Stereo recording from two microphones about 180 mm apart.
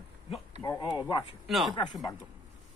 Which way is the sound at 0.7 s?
20° left (ahead or behind).